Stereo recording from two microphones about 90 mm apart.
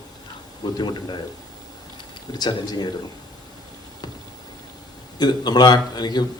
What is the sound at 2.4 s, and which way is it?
Speech, 50° left (ahead or behind).